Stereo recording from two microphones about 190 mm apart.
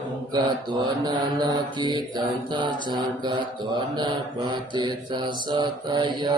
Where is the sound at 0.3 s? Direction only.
20° right (ahead or behind).